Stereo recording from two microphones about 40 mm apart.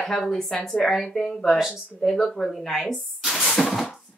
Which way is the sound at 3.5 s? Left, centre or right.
Centre.